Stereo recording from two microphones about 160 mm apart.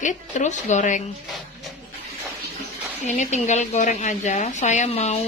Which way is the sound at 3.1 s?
50° left (ahead or behind).